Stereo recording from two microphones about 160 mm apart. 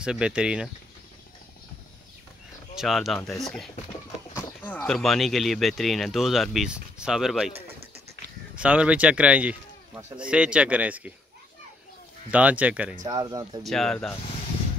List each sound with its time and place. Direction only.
0.0 s speech: 5° right (ahead or behind)
2.7 s speech: centre (ahead or behind)
8.5 s speech: 5° right (ahead or behind)
12.3 s speech: 10° right (ahead or behind)
13.0 s speech: 25° right (ahead or behind)
13.7 s speech: centre (ahead or behind)